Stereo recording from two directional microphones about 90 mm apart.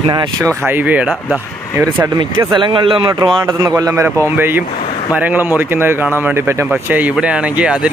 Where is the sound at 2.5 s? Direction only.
65° right (ahead or behind).